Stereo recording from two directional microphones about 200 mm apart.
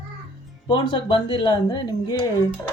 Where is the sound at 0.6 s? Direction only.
20° left (ahead or behind).